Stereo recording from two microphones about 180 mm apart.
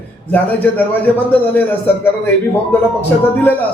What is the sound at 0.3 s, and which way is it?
A man's voice, 10° left (ahead or behind).